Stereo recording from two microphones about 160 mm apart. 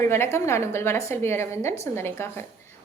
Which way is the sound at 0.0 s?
15° left (ahead or behind).